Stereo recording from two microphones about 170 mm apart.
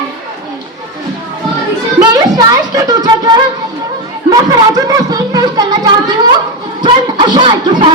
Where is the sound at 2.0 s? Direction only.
20° right (ahead or behind).